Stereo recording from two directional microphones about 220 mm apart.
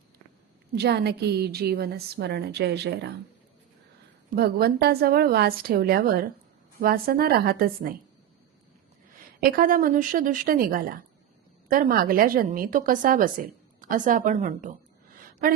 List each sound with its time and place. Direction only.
0.7 s a woman's voice: 45° right (ahead or behind)
4.4 s a woman's voice: 45° right (ahead or behind)
9.4 s a woman's voice: 40° right (ahead or behind)